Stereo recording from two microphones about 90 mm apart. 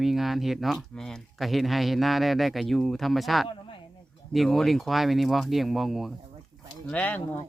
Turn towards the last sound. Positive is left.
turn(degrees=15)  # may be behind; listen again after turning